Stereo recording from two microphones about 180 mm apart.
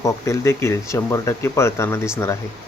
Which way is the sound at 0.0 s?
15° left (ahead or behind).